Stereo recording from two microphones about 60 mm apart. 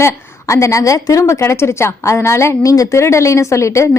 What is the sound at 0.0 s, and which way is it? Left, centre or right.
A woman's voice, left.